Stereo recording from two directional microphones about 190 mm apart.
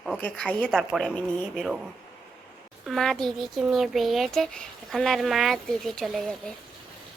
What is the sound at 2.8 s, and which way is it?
A child's voice, centre (ahead or behind).